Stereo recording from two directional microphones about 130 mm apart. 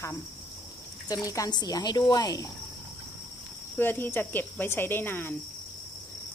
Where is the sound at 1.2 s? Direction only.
25° left (ahead or behind).